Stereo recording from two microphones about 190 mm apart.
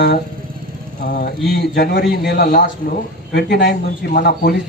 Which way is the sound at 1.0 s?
50° left (ahead or behind).